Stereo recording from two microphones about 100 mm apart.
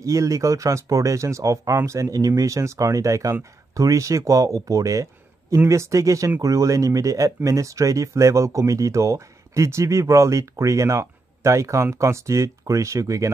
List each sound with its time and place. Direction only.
0.0 s speech: 30° right (ahead or behind)